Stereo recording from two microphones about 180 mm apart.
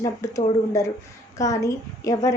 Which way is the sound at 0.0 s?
20° left (ahead or behind).